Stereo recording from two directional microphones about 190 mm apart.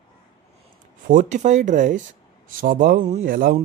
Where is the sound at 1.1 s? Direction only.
40° right (ahead or behind).